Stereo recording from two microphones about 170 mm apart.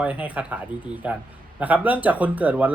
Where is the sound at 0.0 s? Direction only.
10° right (ahead or behind).